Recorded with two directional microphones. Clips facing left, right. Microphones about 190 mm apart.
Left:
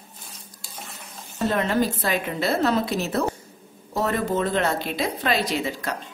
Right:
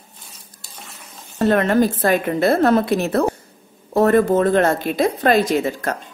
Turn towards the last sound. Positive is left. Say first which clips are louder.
# right 7 dB
turn(degrees=-50)  # may be behind; listen again after turning